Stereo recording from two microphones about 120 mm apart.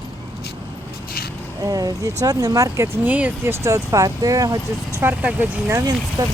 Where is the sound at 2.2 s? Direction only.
30° right (ahead or behind); by 3.5 s 10° right (ahead or behind).